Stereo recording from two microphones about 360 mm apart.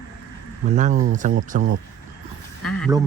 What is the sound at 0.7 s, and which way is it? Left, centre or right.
Speech, right.